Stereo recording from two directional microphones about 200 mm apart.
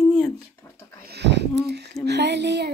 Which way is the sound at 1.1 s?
60° right (ahead or behind).